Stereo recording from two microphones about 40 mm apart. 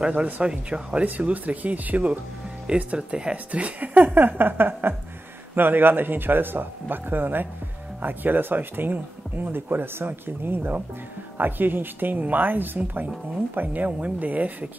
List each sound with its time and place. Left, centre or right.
0.1 s speech: right
1.3 s speech: right
3.0 s speech: right
3.9 s speech: right